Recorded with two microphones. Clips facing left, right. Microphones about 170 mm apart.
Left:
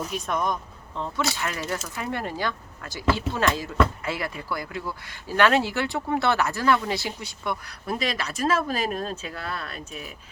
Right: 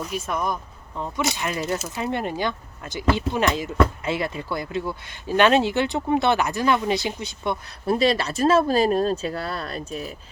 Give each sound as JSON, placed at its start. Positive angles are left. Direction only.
{"t": 0.1, "sound": "speech", "side_deg": -5}